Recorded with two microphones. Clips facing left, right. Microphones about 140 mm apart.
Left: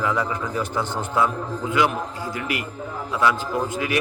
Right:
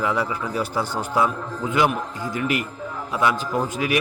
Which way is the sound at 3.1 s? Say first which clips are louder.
Left 1 dB; 15° right (ahead or behind).